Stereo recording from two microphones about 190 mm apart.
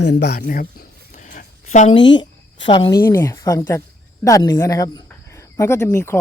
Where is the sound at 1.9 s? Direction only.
25° left (ahead or behind).